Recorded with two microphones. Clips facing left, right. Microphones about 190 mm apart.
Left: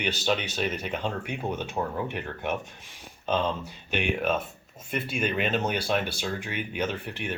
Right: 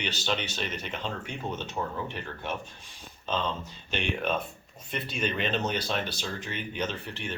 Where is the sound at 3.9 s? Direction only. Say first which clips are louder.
Left 3 dB; 5° left (ahead or behind).